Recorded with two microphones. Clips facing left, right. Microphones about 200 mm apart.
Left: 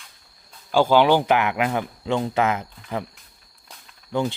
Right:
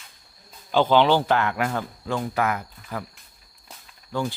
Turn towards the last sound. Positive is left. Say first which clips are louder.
# left 3 dB
turn(degrees=20)  # may be behind; listen again after turning